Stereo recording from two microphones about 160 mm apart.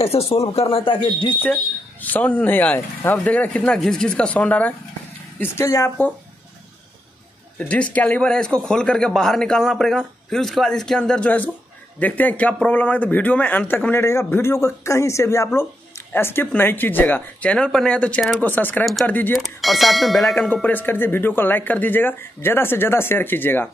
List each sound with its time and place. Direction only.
0.0 s speech: 40° left (ahead or behind)
1.3 s a man's voice: 10° left (ahead or behind)
7.5 s a man's voice: 10° left (ahead or behind)
19.3 s a man's voice: centre (ahead or behind)